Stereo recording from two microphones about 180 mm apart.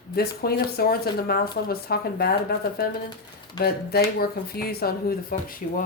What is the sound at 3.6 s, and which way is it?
Speech, 60° left (ahead or behind).